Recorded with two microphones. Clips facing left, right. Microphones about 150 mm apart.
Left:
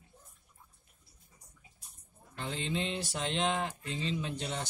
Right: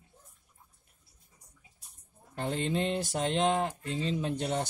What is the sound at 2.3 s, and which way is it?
Speech, 50° right (ahead or behind).